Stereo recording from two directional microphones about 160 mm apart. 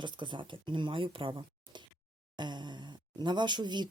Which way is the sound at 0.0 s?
30° right (ahead or behind).